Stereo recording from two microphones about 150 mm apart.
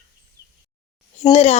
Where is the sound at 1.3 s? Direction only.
45° left (ahead or behind).